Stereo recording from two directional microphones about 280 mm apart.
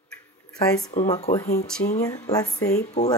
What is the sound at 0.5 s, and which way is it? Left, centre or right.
Speech, centre.